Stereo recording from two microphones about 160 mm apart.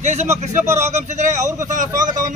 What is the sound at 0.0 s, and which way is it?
Speech, 45° right (ahead or behind).